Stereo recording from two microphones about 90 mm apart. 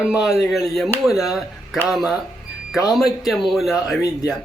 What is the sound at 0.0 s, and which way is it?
Speech, centre (ahead or behind).